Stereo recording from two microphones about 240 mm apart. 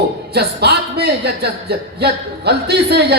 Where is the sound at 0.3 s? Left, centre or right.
Right.